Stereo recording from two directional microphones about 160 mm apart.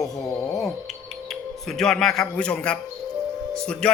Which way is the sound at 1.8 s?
5° left (ahead or behind).